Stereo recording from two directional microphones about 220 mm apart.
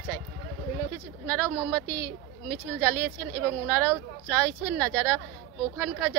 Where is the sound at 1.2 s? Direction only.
5° left (ahead or behind).